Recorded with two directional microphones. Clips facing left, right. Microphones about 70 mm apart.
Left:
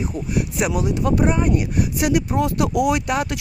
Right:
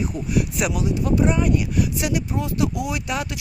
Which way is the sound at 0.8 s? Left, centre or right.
Left.